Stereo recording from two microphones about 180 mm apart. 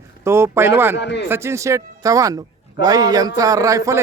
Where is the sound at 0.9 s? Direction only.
70° left (ahead or behind).